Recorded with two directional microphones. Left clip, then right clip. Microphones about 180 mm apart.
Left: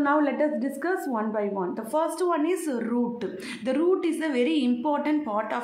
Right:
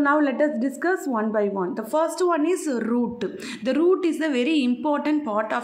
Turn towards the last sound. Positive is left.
turn(degrees=-20)  # may be behind; listen again after turning